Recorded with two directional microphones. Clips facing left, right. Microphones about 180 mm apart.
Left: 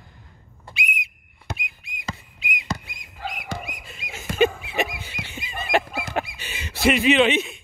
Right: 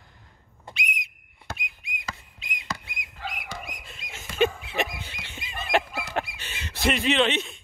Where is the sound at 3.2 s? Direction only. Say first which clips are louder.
Left 4 dB; 40° left (ahead or behind).